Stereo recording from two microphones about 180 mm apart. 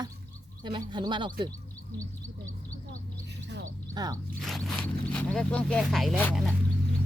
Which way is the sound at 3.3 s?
70° right (ahead or behind).